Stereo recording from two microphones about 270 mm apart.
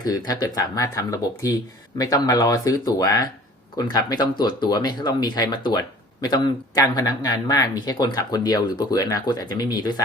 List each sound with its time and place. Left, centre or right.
0.0 s speech: centre